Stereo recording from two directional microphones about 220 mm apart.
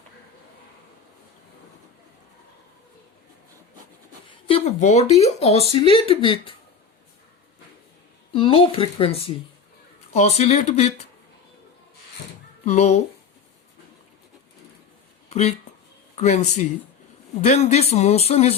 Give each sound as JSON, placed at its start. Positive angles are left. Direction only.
{"t": 4.3, "sound": "speech", "side_deg": 25}
{"t": 8.3, "sound": "speech", "side_deg": 25}
{"t": 12.6, "sound": "speech", "side_deg": 30}
{"t": 15.3, "sound": "speech", "side_deg": 30}